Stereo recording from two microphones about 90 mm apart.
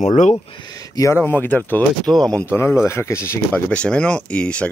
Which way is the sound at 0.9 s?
40° left (ahead or behind).